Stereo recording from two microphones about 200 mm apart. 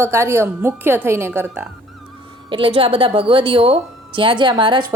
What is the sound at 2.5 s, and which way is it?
A woman's voice, 25° right (ahead or behind).